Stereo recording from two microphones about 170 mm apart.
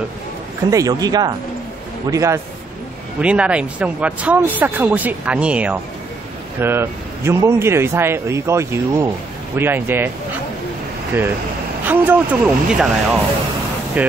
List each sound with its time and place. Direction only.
0.7 s speech: 20° right (ahead or behind)
3.2 s speech: 5° right (ahead or behind)
11.9 s speech: 10° right (ahead or behind)